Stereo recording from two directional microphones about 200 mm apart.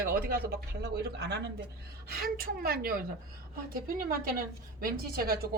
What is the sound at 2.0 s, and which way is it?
Speech, 45° right (ahead or behind).